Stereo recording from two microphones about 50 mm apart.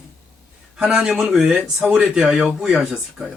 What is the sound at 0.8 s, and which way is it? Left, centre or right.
A man's voice, centre.